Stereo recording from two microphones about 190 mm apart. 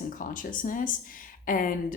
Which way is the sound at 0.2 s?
45° left (ahead or behind).